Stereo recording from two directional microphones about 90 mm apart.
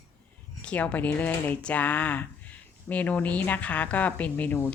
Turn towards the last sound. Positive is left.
turn(degrees=20)  # may be behind; listen again after turning